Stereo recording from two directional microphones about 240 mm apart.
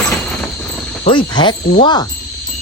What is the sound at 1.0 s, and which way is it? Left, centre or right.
Speech, centre.